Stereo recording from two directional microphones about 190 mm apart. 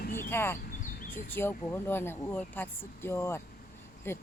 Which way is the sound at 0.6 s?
50° left (ahead or behind).